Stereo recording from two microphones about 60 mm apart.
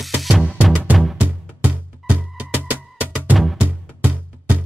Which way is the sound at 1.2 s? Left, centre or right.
Right.